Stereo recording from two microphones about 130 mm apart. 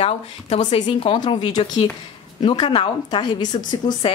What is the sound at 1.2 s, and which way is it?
Speech, 35° left (ahead or behind).